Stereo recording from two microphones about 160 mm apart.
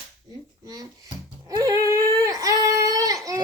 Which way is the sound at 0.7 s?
25° right (ahead or behind).